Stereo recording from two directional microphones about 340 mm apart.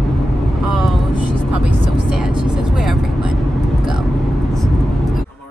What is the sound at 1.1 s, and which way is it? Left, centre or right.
Vehicle, right.